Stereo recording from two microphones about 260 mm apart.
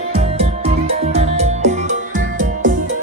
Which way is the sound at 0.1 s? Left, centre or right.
Right.